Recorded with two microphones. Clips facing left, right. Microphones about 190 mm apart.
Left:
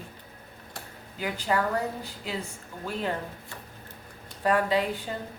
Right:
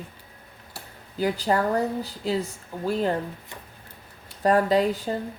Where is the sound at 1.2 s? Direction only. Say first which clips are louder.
Right 5 dB; 35° right (ahead or behind).